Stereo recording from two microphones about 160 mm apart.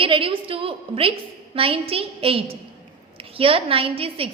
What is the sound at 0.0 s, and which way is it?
A woman's voice, 35° right (ahead or behind).